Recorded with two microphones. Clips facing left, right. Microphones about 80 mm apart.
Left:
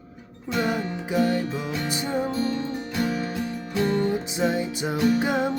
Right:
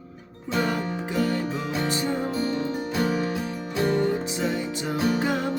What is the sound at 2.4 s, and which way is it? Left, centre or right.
Music, centre.